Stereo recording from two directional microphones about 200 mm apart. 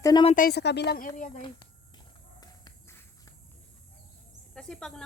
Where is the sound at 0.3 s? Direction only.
45° left (ahead or behind).